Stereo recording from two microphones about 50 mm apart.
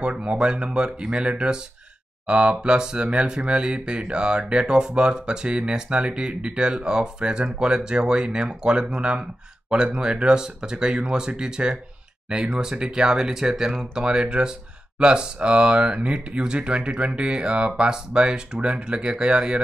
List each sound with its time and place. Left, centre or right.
0.0 s speech: centre